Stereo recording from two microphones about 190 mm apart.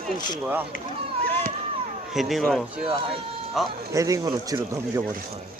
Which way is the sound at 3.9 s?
15° right (ahead or behind).